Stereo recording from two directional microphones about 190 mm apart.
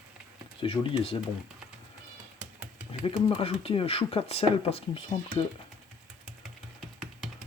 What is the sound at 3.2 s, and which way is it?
Speech, 30° left (ahead or behind).